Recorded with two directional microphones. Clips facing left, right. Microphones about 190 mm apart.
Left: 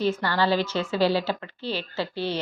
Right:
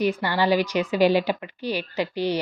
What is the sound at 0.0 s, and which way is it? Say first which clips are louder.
A woman's voice: right 1 dB; 15° right (ahead or behind).